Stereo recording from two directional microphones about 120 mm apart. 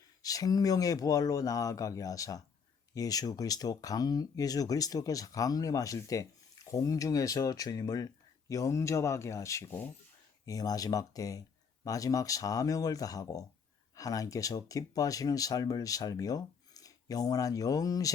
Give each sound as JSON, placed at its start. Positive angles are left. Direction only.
{"t": 0.2, "sound": "speech", "side_deg": 30}
{"t": 10.4, "sound": "speech", "side_deg": 30}